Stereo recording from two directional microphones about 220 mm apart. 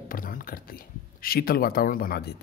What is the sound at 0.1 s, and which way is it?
A man's voice, 40° left (ahead or behind).